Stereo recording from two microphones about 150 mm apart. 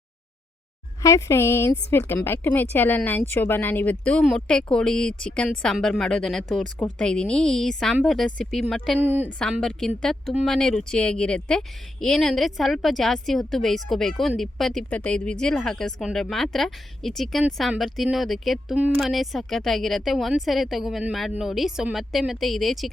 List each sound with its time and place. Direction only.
1.0 s a woman's voice: 20° left (ahead or behind); by 8.6 s centre (ahead or behind)
9.0 s speech: 15° right (ahead or behind)
9.4 s a woman's voice: 5° left (ahead or behind)
19.0 s a woman's voice: centre (ahead or behind)